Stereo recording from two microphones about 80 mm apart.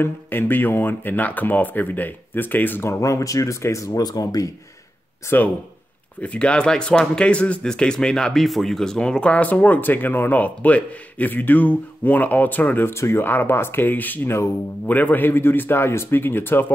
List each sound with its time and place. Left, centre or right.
0.0 s speech: left
2.9 s speech: left
5.3 s speech: left
6.2 s speech: centre; by 14.5 s left
14.9 s speech: centre